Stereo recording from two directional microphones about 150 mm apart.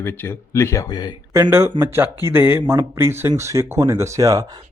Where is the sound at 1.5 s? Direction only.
15° right (ahead or behind).